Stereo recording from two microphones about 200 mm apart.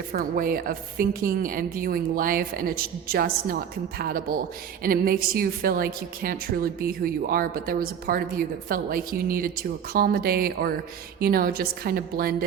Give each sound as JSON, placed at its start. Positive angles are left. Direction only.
{"t": 0.1, "sound": "a woman's voice", "side_deg": -45}